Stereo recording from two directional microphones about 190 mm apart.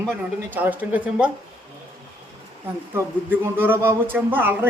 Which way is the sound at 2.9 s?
10° right (ahead or behind).